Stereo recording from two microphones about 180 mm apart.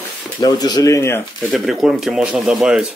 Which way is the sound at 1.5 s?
Centre (ahead or behind).